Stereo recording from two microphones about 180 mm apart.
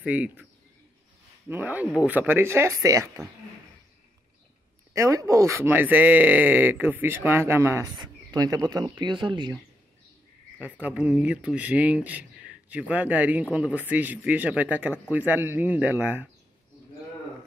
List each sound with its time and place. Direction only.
0.0 s speech: 10° right (ahead or behind)
1.5 s speech: 10° right (ahead or behind)
4.9 s speech: 15° right (ahead or behind)
10.6 s speech: 10° right (ahead or behind)